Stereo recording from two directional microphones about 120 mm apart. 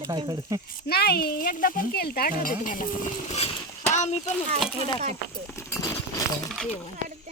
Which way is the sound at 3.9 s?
75° left (ahead or behind).